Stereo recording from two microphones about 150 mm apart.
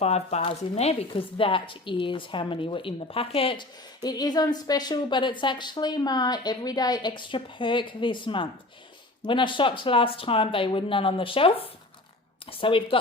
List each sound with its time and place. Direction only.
0.0 s speech: 45° left (ahead or behind)